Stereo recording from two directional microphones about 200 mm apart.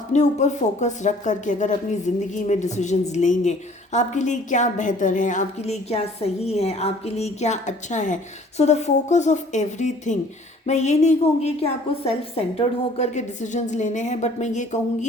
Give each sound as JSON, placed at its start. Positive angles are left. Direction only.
{"t": 0.1, "sound": "a woman's voice", "side_deg": 35}